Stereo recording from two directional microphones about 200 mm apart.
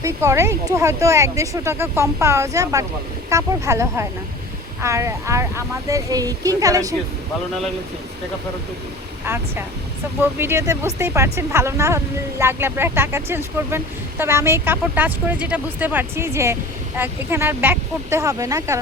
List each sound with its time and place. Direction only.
0.0 s speech: 15° right (ahead or behind)
9.2 s speech: 10° right (ahead or behind)